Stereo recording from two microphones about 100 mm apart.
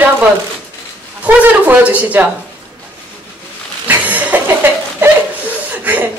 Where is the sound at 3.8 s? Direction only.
15° right (ahead or behind).